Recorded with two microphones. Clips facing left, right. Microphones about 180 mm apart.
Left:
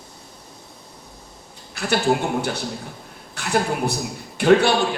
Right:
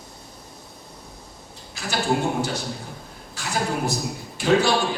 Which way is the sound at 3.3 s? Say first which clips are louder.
Left 4 dB; 60° left (ahead or behind).